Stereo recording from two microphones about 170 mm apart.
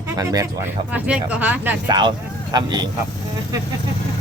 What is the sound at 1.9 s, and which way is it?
Speech, 25° right (ahead or behind).